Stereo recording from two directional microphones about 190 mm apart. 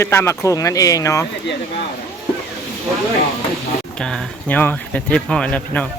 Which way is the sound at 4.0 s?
5° left (ahead or behind).